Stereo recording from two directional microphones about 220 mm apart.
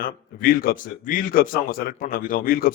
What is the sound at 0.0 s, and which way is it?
A man's voice, 40° left (ahead or behind).